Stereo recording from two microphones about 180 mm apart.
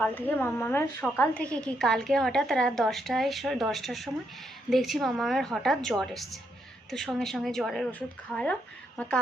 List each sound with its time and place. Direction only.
0.0 s a woman's voice: 10° left (ahead or behind)